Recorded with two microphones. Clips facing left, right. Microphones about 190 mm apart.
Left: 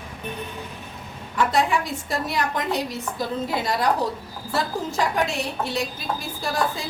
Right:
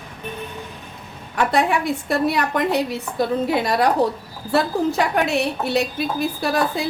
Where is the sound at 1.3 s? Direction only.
60° right (ahead or behind).